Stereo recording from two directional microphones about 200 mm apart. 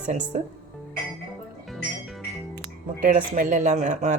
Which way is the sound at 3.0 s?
40° right (ahead or behind).